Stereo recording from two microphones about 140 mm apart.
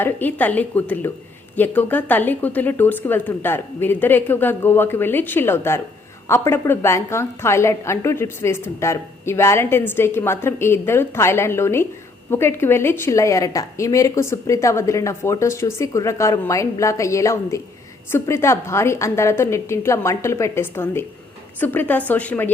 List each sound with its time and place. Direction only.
0.0 s a woman's voice: 15° left (ahead or behind)